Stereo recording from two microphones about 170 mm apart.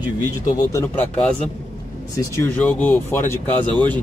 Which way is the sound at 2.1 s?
15° left (ahead or behind).